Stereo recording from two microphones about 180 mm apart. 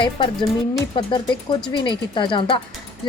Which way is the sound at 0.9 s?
25° left (ahead or behind).